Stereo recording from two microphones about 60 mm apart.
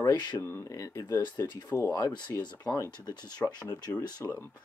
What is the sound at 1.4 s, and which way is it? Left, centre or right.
Speech, left.